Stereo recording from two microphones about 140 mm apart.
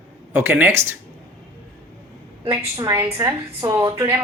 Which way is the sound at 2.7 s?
30° right (ahead or behind).